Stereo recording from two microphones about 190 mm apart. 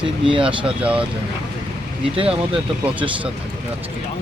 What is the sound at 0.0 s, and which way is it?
Speech, 25° right (ahead or behind).